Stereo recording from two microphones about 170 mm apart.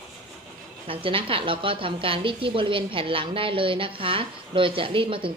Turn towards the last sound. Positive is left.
turn(degrees=-30)  # may be behind; listen again after turning